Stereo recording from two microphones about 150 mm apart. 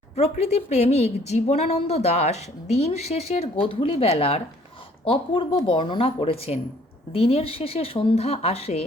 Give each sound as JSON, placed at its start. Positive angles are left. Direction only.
{"t": 0.2, "sound": "speech", "side_deg": 45}